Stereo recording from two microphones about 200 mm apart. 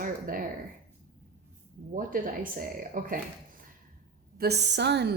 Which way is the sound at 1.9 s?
45° right (ahead or behind).